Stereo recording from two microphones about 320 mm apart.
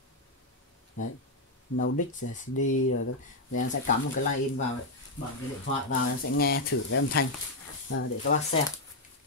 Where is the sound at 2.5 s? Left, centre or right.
Left.